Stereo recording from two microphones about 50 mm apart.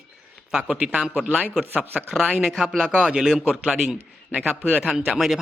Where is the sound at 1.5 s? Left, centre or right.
Right.